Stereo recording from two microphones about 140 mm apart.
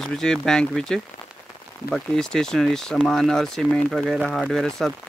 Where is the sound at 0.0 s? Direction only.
5° left (ahead or behind).